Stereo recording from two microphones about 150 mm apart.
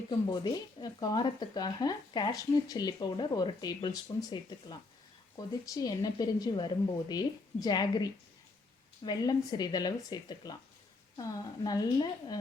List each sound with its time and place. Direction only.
0.1 s speech: 30° left (ahead or behind)